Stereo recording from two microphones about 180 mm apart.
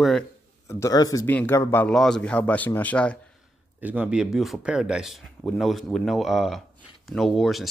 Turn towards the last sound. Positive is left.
turn(degrees=0)  # may be behind; listen again after turning